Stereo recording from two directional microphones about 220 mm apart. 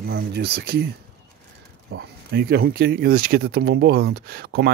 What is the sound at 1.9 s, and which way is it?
Speech, 45° right (ahead or behind).